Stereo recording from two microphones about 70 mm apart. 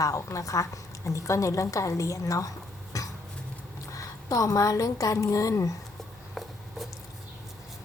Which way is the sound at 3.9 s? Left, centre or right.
Left.